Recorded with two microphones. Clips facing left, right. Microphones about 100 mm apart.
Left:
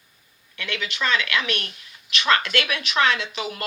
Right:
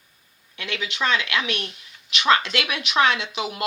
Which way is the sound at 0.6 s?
15° right (ahead or behind).